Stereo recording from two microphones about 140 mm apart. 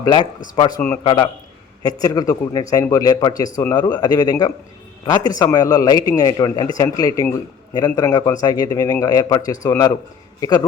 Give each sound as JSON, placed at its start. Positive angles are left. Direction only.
{"t": 0.0, "sound": "speech", "side_deg": 30}